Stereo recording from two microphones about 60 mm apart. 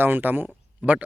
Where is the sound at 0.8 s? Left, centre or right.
Right.